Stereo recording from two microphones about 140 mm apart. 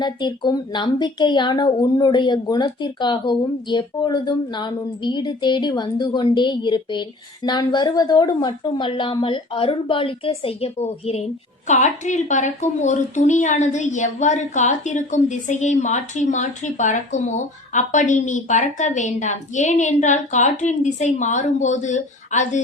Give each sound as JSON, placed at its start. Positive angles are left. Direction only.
{"t": 0.0, "sound": "a woman's voice", "side_deg": 30}
{"t": 11.7, "sound": "a woman's voice", "side_deg": 60}